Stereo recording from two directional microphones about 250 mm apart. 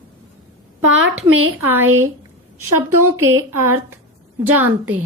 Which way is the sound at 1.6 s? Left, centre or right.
Centre.